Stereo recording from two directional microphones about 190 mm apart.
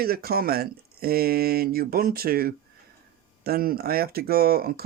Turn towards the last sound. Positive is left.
turn(degrees=-55)  # may be behind; listen again after turning